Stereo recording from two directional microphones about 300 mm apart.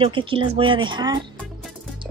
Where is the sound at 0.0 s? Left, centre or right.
Centre.